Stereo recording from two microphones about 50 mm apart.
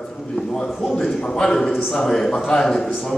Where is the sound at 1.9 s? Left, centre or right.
Centre.